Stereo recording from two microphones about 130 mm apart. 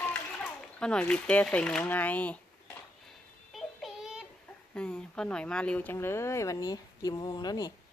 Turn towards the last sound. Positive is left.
turn(degrees=30)  # may be behind; listen again after turning